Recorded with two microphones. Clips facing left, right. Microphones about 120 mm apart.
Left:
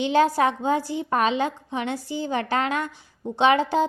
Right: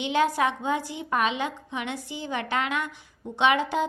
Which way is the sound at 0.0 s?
35° left (ahead or behind).